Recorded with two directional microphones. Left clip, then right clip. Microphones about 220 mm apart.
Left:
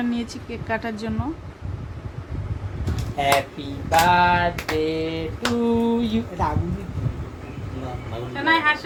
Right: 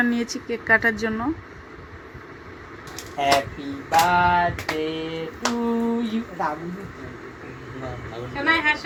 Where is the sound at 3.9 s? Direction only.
15° left (ahead or behind).